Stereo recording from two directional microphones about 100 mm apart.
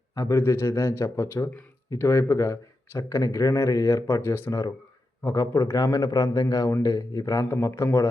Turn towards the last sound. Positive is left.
turn(degrees=30)  # may be behind; listen again after turning